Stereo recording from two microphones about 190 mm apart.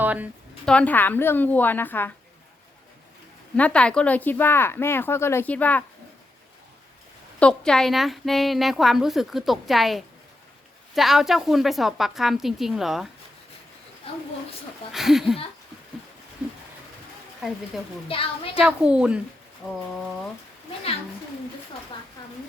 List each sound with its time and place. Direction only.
0.0 s a woman's voice: 10° right (ahead or behind)
0.6 s speech: 5° left (ahead or behind)
3.5 s speech: 5° left (ahead or behind)
7.3 s a woman's voice: 5° left (ahead or behind)
14.9 s a woman's voice: centre (ahead or behind)
17.7 s a woman's voice: centre (ahead or behind)
18.1 s speech: 30° left (ahead or behind)
18.6 s a woman's voice: 5° right (ahead or behind)
22.2 s a sound: 20° left (ahead or behind)